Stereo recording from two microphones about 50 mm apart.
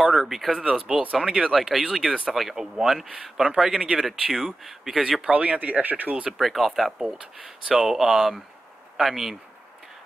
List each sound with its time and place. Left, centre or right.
0.0 s speech: centre
1.5 s speech: centre
5.2 s speech: right
6.3 s speech: centre
7.4 s speech: centre